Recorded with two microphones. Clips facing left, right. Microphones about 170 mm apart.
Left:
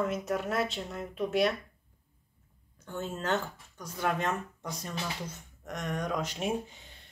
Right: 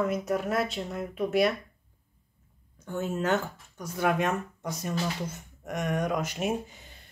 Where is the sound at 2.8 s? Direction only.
10° right (ahead or behind).